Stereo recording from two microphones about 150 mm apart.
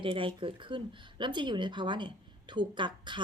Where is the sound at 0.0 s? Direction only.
35° right (ahead or behind).